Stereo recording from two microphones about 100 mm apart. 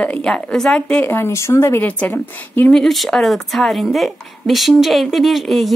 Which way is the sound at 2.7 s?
Centre (ahead or behind).